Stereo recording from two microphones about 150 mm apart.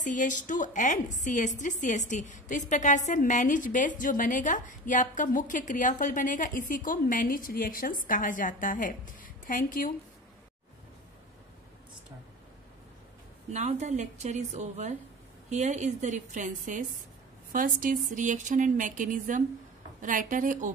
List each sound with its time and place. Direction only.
0.1 s a woman's voice: 60° left (ahead or behind)
13.5 s a woman's voice: 50° right (ahead or behind)